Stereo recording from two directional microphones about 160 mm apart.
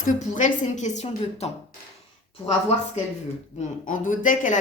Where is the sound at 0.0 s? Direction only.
55° left (ahead or behind).